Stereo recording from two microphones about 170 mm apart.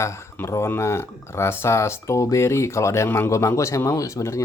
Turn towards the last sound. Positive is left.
turn(degrees=20)  # may be behind; listen again after turning